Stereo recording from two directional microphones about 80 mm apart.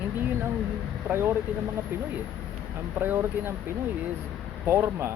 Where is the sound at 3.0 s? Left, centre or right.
Right.